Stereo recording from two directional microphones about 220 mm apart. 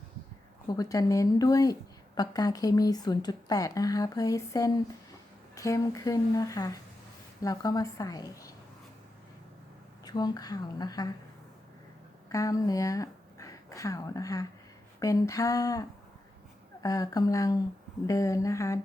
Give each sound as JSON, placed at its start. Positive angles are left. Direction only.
{"t": 0.7, "sound": "speech", "side_deg": 15}
{"t": 10.0, "sound": "speech", "side_deg": 20}
{"t": 12.3, "sound": "speech", "side_deg": 15}
{"t": 16.8, "sound": "speech", "side_deg": 15}